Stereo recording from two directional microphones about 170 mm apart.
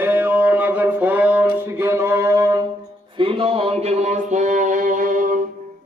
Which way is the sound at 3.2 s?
35° right (ahead or behind).